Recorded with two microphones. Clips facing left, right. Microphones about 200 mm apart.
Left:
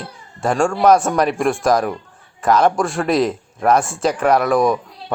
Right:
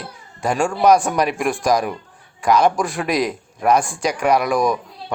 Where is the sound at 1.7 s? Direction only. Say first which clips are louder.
Left 2 dB; 15° right (ahead or behind).